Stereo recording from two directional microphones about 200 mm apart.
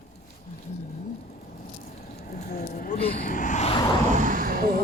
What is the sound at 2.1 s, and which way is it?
Speech, 45° left (ahead or behind).